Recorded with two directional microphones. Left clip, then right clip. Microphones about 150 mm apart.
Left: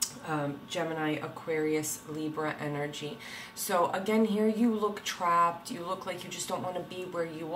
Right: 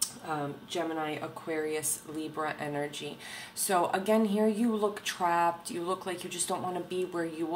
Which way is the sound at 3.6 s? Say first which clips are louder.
Right 1 dB; 45° right (ahead or behind).